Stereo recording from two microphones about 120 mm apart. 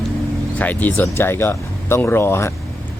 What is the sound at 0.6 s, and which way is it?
Speech, 15° left (ahead or behind).